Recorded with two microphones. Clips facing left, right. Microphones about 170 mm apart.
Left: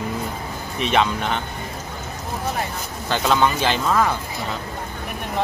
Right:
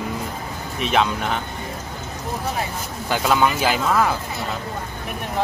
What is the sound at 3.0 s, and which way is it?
Speech, 5° right (ahead or behind).